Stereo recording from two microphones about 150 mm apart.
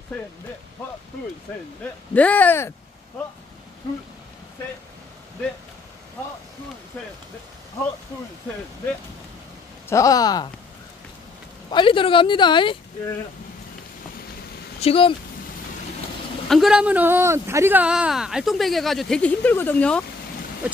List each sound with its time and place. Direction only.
2.1 s speech: 10° left (ahead or behind)
9.8 s speech: 20° left (ahead or behind)
11.7 s speech: 35° left (ahead or behind)
14.8 s speech: 40° left (ahead or behind)
16.4 s speech: centre (ahead or behind)
20.6 s a sound: 10° right (ahead or behind)